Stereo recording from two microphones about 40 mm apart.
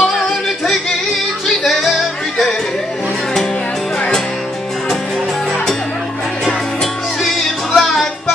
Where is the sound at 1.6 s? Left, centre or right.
Centre.